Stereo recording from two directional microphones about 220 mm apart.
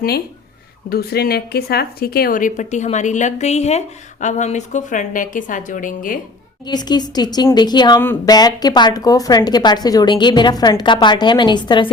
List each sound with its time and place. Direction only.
0.9 s speech: 45° left (ahead or behind)
6.7 s speech: 20° left (ahead or behind)